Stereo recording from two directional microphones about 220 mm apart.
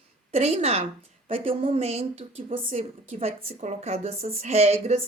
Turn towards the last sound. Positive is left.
turn(degrees=-30)  # may be behind; listen again after turning